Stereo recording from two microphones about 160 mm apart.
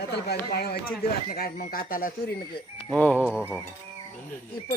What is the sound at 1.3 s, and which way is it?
Speech, 65° left (ahead or behind).